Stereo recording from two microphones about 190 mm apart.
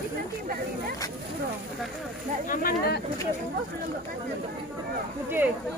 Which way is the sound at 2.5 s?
50° left (ahead or behind).